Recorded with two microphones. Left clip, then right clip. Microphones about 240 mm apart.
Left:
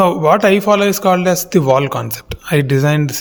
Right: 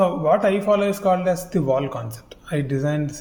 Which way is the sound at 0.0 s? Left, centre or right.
Left.